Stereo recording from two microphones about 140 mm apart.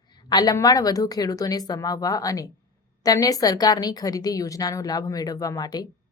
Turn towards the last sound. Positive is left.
turn(degrees=30)  # may be behind; listen again after turning